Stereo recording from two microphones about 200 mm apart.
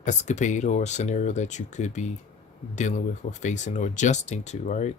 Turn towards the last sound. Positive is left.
turn(degrees=35)  # may be behind; listen again after turning